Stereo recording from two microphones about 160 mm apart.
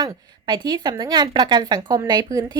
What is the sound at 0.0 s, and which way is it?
Speech, 25° right (ahead or behind).